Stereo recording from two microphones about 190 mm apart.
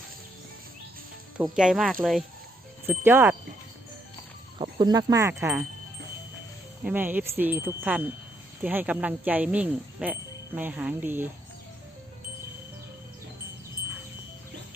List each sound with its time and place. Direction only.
1.4 s speech: 5° right (ahead or behind)
2.8 s speech: 10° right (ahead or behind)
4.5 s speech: 25° right (ahead or behind)
5.3 s speech: 10° right (ahead or behind)
6.8 s speech: 10° right (ahead or behind)